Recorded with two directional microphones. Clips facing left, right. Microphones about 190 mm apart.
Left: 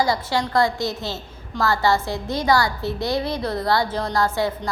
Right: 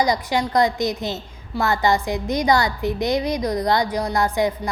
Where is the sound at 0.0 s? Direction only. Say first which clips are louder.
Right 1 dB; 20° right (ahead or behind).